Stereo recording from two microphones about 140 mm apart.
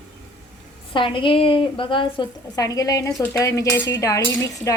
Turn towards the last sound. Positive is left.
turn(degrees=25)  # may be behind; listen again after turning